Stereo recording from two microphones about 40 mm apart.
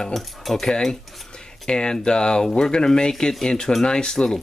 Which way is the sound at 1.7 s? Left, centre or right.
Left.